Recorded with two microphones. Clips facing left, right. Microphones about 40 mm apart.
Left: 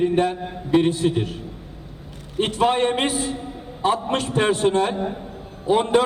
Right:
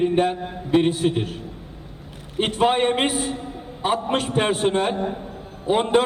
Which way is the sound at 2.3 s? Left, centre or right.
Right.